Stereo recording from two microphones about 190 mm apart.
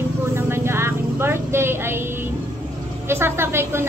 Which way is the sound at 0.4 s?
15° right (ahead or behind).